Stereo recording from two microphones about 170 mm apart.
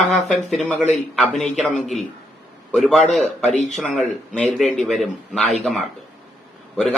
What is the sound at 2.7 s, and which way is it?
Speech, centre (ahead or behind).